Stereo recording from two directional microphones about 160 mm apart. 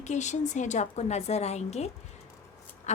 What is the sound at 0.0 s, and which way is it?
A woman's voice, 45° left (ahead or behind).